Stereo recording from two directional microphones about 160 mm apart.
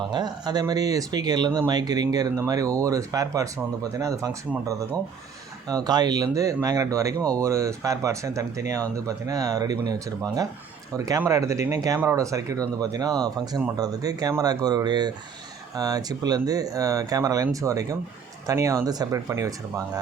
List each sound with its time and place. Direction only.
0.1 s speech: 25° right (ahead or behind)